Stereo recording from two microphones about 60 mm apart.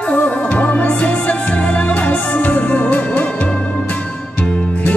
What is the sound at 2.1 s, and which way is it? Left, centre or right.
Music, left.